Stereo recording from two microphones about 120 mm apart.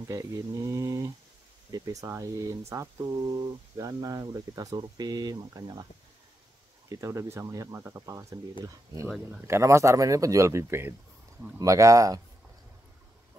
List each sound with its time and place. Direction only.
0.1 s speech: 30° right (ahead or behind)
6.9 s speech: 25° right (ahead or behind)